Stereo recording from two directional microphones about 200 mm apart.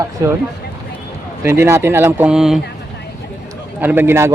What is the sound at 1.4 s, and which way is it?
A man's voice, 10° right (ahead or behind).